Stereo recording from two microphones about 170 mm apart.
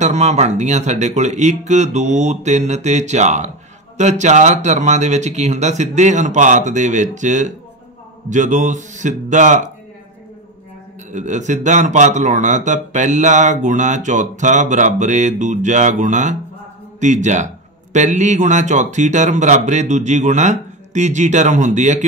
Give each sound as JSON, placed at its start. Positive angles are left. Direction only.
{"t": 0.0, "sound": "a man's voice", "side_deg": -45}
{"t": 11.1, "sound": "a man's voice", "side_deg": -45}